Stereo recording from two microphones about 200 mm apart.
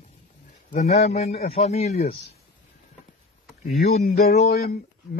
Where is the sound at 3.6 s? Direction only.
50° left (ahead or behind).